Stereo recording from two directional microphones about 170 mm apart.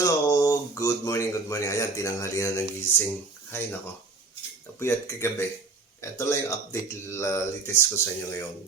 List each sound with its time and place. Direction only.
0.0 s speech: 20° left (ahead or behind)
4.8 s speech: 15° left (ahead or behind)